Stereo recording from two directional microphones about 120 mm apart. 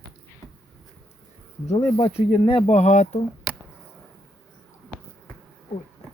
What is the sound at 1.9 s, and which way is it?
Speech, 45° left (ahead or behind).